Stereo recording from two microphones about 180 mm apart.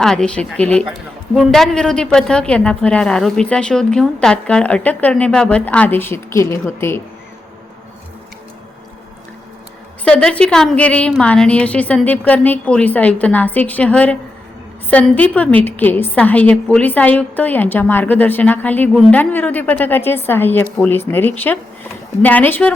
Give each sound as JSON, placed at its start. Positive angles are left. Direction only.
{"t": 0.0, "sound": "a woman's voice", "side_deg": 5}
{"t": 10.0, "sound": "a woman's voice", "side_deg": 5}